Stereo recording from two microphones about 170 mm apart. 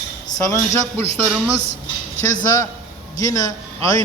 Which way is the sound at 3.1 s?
20° left (ahead or behind).